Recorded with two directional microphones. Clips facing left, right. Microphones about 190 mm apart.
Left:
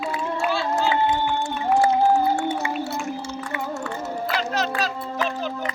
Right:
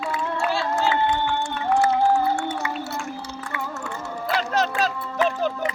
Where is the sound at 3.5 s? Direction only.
20° left (ahead or behind).